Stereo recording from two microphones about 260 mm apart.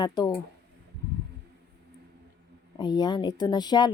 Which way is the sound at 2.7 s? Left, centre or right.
Centre.